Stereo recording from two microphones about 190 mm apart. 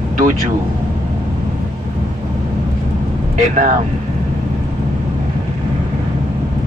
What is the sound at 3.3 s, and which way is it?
Speech, 40° right (ahead or behind).